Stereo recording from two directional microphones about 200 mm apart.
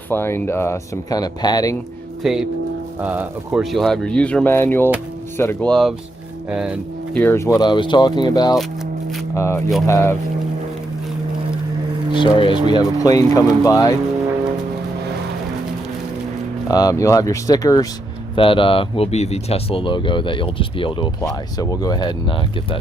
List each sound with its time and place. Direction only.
0.1 s speech: 10° left (ahead or behind)
3.0 s speech: 10° right (ahead or behind)
3.6 s speech: centre (ahead or behind)
7.1 s speech: 10° left (ahead or behind)
12.1 s speech: 25° left (ahead or behind)
16.6 s speech: 20° left (ahead or behind)